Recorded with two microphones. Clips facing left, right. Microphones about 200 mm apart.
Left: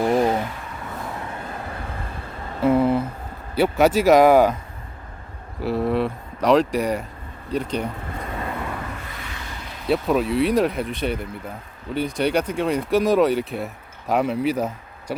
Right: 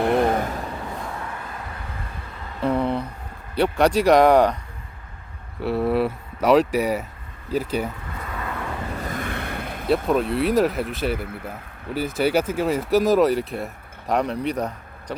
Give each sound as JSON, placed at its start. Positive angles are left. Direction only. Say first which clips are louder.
{"t": 0.0, "sound": "a sound", "louder": "even", "side_deg": -60}
{"t": 2.6, "sound": "a sound", "louder": "left 4 dB", "side_deg": 5}
{"t": 3.5, "sound": "speech", "louder": "left 1 dB", "side_deg": 5}
{"t": 5.5, "sound": "speech", "louder": "right 1 dB", "side_deg": 0}
{"t": 8.2, "sound": "vehicle", "louder": "left 2 dB", "side_deg": 30}
{"t": 9.0, "sound": "vehicle", "louder": "right 8 dB", "side_deg": -50}
{"t": 9.9, "sound": "speech", "louder": "even", "side_deg": 0}